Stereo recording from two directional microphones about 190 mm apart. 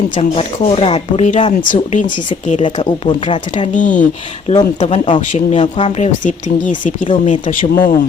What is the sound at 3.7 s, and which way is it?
Speech, 40° left (ahead or behind).